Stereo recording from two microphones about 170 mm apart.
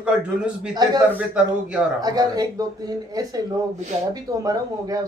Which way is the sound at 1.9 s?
20° right (ahead or behind).